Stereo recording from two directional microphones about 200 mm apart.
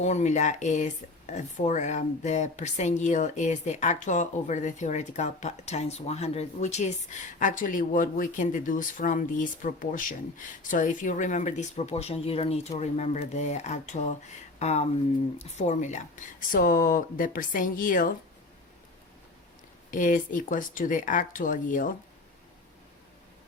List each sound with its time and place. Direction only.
0.0 s speech: 35° left (ahead or behind)
19.9 s speech: 40° left (ahead or behind)